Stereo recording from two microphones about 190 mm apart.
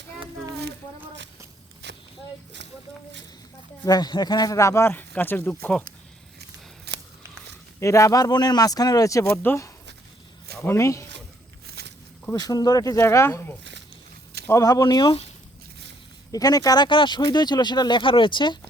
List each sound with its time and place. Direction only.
3.8 s speech: 20° left (ahead or behind)
6.9 s scissors: 60° right (ahead or behind)
7.8 s speech: 15° left (ahead or behind)
11.6 s a sound: 55° right (ahead or behind)
12.2 s speech: 20° left (ahead or behind)
16.3 s speech: 20° left (ahead or behind)